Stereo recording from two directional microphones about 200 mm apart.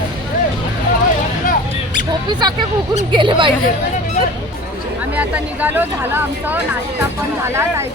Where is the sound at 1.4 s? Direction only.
45° left (ahead or behind).